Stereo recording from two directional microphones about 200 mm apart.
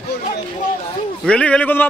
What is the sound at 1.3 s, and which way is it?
Speech, 5° left (ahead or behind).